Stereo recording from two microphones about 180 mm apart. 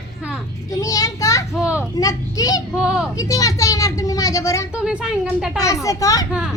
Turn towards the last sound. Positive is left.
turn(degrees=20)  # may be behind; listen again after turning